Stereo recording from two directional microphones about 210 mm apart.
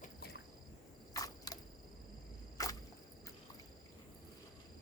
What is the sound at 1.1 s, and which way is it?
Cricket, 15° left (ahead or behind).